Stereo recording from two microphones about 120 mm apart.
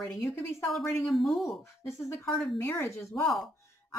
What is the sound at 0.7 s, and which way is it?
Speech, centre (ahead or behind).